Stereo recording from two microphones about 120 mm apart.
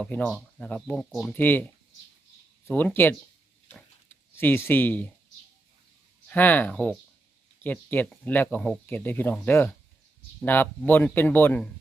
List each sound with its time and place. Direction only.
0.0 s speech: 10° left (ahead or behind)
1.3 s speech: 15° left (ahead or behind)
4.4 s speech: 20° left (ahead or behind)
6.2 s speech: 15° left (ahead or behind)